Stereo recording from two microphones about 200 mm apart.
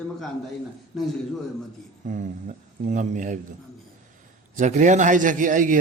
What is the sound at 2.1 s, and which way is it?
A man's voice, 40° right (ahead or behind).